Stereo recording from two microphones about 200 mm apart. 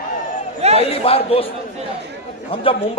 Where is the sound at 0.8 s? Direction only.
30° left (ahead or behind).